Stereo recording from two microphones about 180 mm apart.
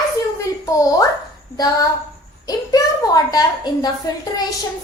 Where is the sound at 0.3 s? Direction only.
20° left (ahead or behind).